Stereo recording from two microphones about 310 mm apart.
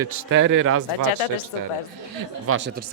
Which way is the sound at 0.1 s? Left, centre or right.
Right.